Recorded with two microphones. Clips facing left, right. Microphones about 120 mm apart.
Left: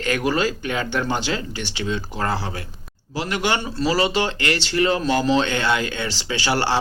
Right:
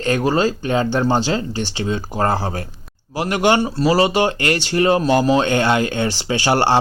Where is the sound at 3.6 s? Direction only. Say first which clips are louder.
Right 8 dB; 40° right (ahead or behind).